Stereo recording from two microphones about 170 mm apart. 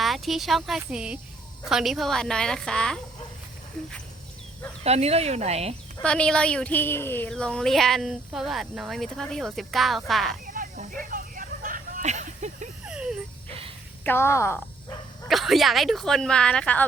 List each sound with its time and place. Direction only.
0.0 s speech: centre (ahead or behind)
4.8 s speech: 40° right (ahead or behind)
6.0 s speech: 5° left (ahead or behind)
10.4 s a sound: 55° right (ahead or behind)
12.8 s a sound: 5° right (ahead or behind)
14.0 s speech: 15° left (ahead or behind)
15.3 s speech: centre (ahead or behind)